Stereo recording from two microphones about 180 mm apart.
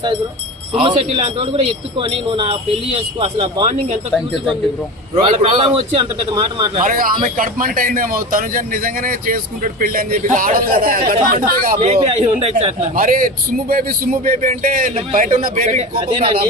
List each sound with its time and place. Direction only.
0.7 s speech: 30° right (ahead or behind)
5.1 s speech: 35° right (ahead or behind)
6.8 s speech: 50° right (ahead or behind)
11.8 s speech: 35° right (ahead or behind)
13.0 s speech: 50° right (ahead or behind); by 16.5 s 30° right (ahead or behind)